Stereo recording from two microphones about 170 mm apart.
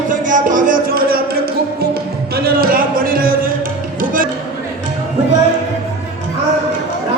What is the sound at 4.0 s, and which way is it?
Music, 55° right (ahead or behind).